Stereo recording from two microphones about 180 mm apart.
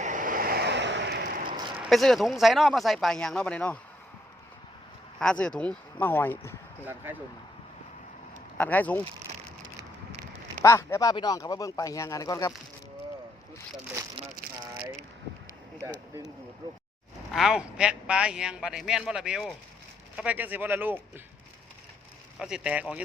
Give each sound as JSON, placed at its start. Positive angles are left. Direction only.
{"t": 0.0, "sound": "vehicle", "side_deg": -45}
{"t": 1.5, "sound": "a sound", "side_deg": -25}
{"t": 1.9, "sound": "a man's voice", "side_deg": 0}
{"t": 5.2, "sound": "speech", "side_deg": 5}
{"t": 6.8, "sound": "speech", "side_deg": -10}
{"t": 8.5, "sound": "speech", "side_deg": 10}
{"t": 10.6, "sound": "speech", "side_deg": 15}
{"t": 17.3, "sound": "a man's voice", "side_deg": -5}
{"t": 22.4, "sound": "a man's voice", "side_deg": -5}